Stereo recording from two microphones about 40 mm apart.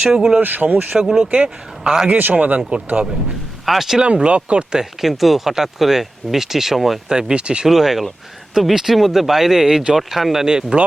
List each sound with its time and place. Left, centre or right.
0.0 s speech: centre
0.4 s speech: right
0.9 s speech: centre
2.0 s speech: right
2.6 s speech: right
3.7 s speech: centre
4.0 s speech: right
4.8 s speech: centre
7.1 s speech: centre
7.7 s speech: centre
10.4 s speech: centre